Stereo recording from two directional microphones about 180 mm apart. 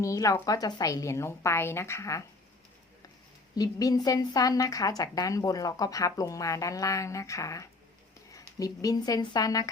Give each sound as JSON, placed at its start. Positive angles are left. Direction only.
{"t": 0.0, "sound": "a woman's voice", "side_deg": 20}
{"t": 3.5, "sound": "a woman's voice", "side_deg": 20}